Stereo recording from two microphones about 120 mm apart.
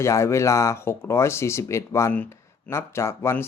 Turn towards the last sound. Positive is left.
turn(degrees=20)  # may be behind; listen again after turning